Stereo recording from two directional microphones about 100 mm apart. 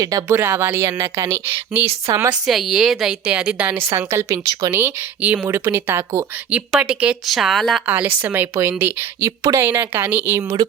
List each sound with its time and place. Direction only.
0.0 s a woman's voice: 35° right (ahead or behind)
0.3 s speech: 20° right (ahead or behind)
2.5 s a woman's voice: 5° right (ahead or behind)
3.8 s a woman's voice: 30° right (ahead or behind)
4.7 s speech: 20° right (ahead or behind)
6.5 s speech: 10° right (ahead or behind)
7.3 s a woman's voice: centre (ahead or behind)
7.9 s speech: 15° right (ahead or behind)
9.2 s a woman's voice: 35° right (ahead or behind)
9.6 s speech: 20° right (ahead or behind)
10.4 s a woman's voice: 35° right (ahead or behind)